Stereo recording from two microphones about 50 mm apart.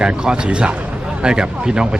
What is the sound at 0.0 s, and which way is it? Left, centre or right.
A man's voice, centre.